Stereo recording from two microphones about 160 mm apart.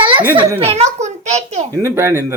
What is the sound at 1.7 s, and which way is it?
Speech, 15° right (ahead or behind).